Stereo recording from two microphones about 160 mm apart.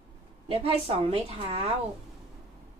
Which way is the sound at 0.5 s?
35° right (ahead or behind).